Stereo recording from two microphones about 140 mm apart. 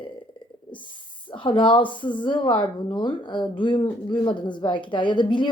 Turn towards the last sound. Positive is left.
turn(degrees=35)  # may be behind; listen again after turning